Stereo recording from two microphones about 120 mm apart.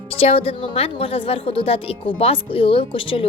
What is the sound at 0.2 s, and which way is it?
A woman's voice, 55° left (ahead or behind).